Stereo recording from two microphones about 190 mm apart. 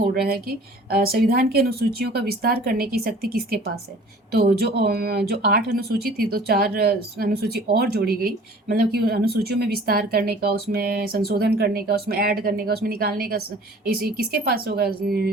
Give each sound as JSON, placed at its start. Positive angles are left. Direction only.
{"t": 0.0, "sound": "speech", "side_deg": -50}